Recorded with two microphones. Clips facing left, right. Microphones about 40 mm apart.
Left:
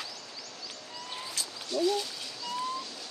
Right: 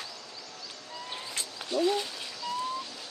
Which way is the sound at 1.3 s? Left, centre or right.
Right.